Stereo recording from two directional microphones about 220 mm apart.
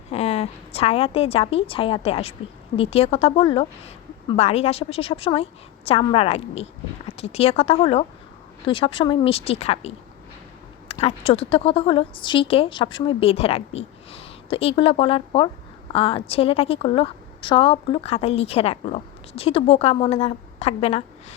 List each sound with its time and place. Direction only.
0.1 s a woman's voice: 30° left (ahead or behind)